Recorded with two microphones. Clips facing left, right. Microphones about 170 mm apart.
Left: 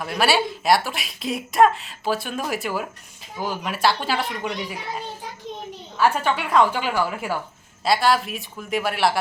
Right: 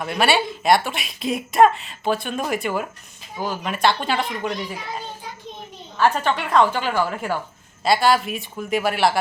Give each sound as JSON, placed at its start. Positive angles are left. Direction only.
{"t": 0.0, "sound": "speech", "side_deg": 0}
{"t": 6.0, "sound": "a woman's voice", "side_deg": 10}